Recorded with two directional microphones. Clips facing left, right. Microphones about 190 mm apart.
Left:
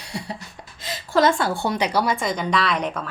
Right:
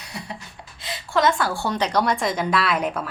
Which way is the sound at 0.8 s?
40° left (ahead or behind).